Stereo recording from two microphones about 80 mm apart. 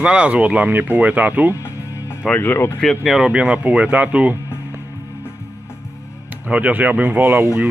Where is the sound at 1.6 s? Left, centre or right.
Left.